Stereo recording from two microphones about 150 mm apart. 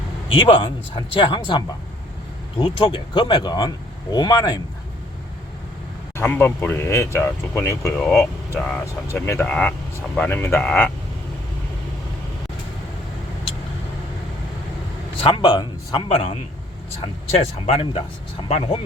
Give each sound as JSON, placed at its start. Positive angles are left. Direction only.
{"t": 0.3, "sound": "speech", "side_deg": 35}
{"t": 6.1, "sound": "speech", "side_deg": 15}
{"t": 15.2, "sound": "a man's voice", "side_deg": 30}
{"t": 16.0, "sound": "speech", "side_deg": 45}
{"t": 17.3, "sound": "speech", "side_deg": 40}